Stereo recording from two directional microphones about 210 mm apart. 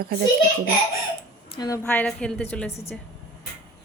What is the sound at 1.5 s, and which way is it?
A woman's voice, 15° left (ahead or behind).